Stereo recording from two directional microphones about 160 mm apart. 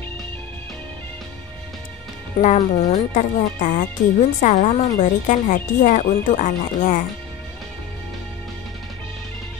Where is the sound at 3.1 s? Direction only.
55° left (ahead or behind).